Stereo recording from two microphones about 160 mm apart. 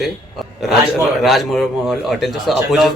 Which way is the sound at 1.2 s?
Centre (ahead or behind).